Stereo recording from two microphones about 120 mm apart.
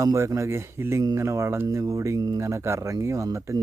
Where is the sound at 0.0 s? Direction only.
30° right (ahead or behind).